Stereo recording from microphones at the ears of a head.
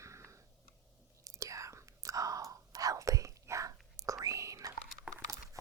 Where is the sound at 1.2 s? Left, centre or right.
Right.